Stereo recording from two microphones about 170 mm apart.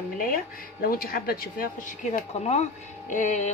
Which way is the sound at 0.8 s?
60° left (ahead or behind).